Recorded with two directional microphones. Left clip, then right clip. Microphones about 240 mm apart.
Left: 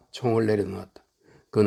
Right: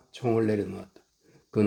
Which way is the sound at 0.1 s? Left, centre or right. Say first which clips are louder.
Left 3 dB; left.